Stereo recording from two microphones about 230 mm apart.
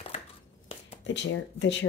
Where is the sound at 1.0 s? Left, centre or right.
Left.